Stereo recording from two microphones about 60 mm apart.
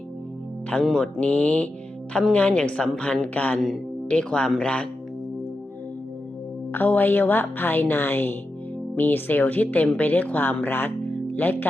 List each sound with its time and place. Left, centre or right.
0.9 s mantra: centre
1.2 s a woman's voice: left
6.7 s a woman's voice: left